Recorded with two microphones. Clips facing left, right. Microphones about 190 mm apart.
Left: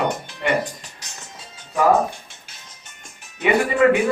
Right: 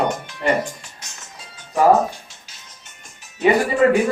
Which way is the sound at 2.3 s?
55° left (ahead or behind).